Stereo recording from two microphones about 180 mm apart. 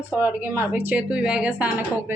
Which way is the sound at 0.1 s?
10° right (ahead or behind).